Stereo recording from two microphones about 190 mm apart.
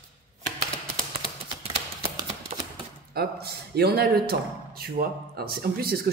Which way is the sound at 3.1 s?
55° right (ahead or behind).